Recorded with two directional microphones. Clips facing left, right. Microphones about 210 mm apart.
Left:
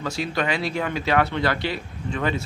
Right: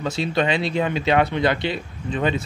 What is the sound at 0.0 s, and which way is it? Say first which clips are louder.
Speech: right 4 dB; 25° right (ahead or behind).